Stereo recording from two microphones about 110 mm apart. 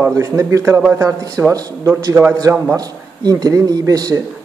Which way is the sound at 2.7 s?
35° right (ahead or behind).